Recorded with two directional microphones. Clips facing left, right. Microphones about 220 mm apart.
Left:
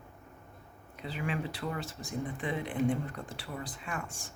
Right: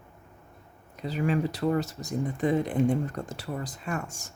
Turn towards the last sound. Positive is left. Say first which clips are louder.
# right 6 dB
turn(degrees=-40)  # may be behind; listen again after turning